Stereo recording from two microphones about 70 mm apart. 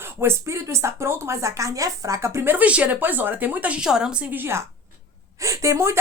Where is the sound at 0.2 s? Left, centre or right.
Right.